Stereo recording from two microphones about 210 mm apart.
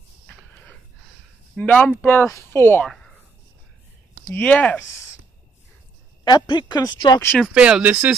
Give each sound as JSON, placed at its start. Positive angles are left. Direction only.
{"t": 0.3, "sound": "a sound", "side_deg": 10}
{"t": 1.6, "sound": "speech", "side_deg": 5}
{"t": 4.3, "sound": "speech", "side_deg": 10}
{"t": 6.2, "sound": "speech", "side_deg": 20}
{"t": 7.4, "sound": "speech", "side_deg": -5}